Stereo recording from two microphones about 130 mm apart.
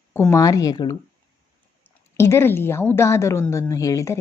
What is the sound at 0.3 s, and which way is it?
Speech, 25° left (ahead or behind).